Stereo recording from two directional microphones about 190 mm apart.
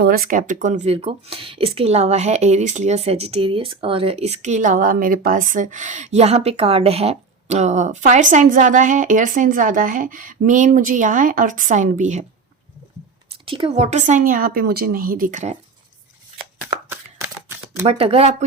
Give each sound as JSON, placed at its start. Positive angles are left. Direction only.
{"t": 0.0, "sound": "speech", "side_deg": -50}
{"t": 13.4, "sound": "speech", "side_deg": -30}
{"t": 16.6, "sound": "shuffling cards", "side_deg": -10}
{"t": 17.8, "sound": "speech", "side_deg": -30}